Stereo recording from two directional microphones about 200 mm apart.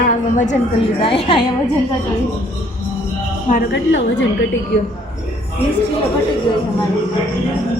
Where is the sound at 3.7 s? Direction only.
70° left (ahead or behind).